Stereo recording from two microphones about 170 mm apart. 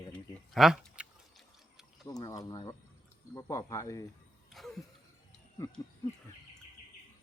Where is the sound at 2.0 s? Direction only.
20° left (ahead or behind).